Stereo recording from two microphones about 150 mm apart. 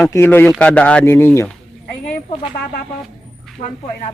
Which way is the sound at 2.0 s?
55° left (ahead or behind).